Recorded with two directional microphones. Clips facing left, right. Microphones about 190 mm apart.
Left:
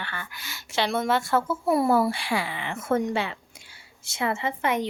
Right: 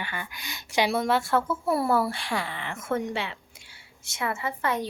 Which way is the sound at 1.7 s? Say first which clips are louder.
Left 4 dB; 15° left (ahead or behind).